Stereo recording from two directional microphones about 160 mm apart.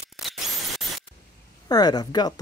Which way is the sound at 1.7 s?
25° left (ahead or behind).